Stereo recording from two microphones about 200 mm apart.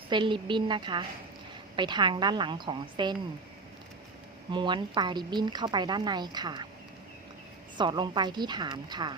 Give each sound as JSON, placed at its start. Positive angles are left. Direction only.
{"t": 0.1, "sound": "speech", "side_deg": -25}
{"t": 4.5, "sound": "speech", "side_deg": -25}
{"t": 7.8, "sound": "speech", "side_deg": -25}